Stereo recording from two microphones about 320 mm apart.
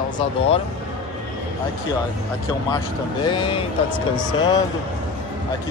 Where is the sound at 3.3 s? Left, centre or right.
Centre.